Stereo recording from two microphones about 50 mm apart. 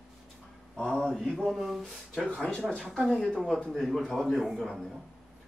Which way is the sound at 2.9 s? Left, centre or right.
Centre.